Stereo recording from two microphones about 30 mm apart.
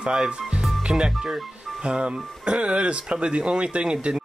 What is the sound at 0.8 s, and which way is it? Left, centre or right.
Speech, right.